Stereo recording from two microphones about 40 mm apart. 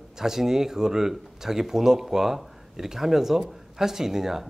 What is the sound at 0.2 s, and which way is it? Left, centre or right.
Speech, centre.